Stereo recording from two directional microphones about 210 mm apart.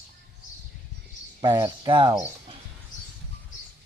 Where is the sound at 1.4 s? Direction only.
20° right (ahead or behind).